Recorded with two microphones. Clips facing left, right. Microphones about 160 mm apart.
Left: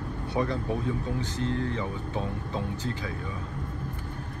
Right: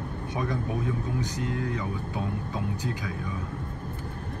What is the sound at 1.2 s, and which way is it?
Speech, 15° right (ahead or behind).